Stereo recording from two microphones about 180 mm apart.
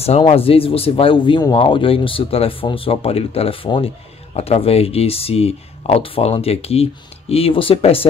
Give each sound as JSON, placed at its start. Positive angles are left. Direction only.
{"t": 0.3, "sound": "speech", "side_deg": 30}